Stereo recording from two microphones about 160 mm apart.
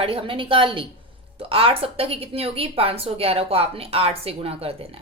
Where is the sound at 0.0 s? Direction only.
35° right (ahead or behind).